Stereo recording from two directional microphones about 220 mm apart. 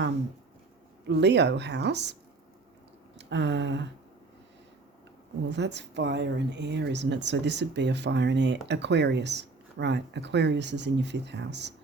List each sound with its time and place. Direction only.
1.0 s speech: 50° right (ahead or behind)
3.2 s a sound: 50° right (ahead or behind)
5.5 s speech: 50° right (ahead or behind)